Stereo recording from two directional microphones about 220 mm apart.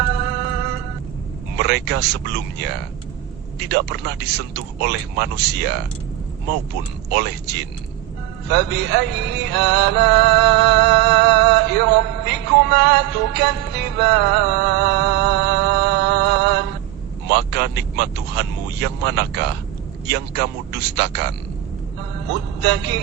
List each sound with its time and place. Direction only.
1.5 s speech: 50° right (ahead or behind)
3.7 s speech: 50° right (ahead or behind)
7.2 s speech: 50° right (ahead or behind)
8.4 s music: 50° right (ahead or behind)
17.3 s speech: 50° right (ahead or behind)
22.6 s speech: 50° right (ahead or behind)